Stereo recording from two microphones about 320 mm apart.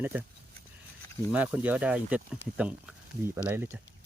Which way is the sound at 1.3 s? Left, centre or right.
Centre.